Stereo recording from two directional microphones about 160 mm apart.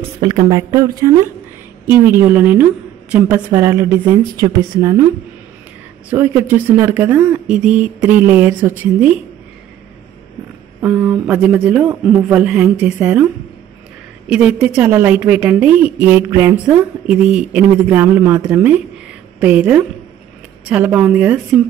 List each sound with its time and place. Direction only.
0.2 s a woman's voice: 25° right (ahead or behind)
6.0 s a woman's voice: 15° right (ahead or behind)
10.8 s a woman's voice: 10° right (ahead or behind)
14.3 s a woman's voice: 5° right (ahead or behind)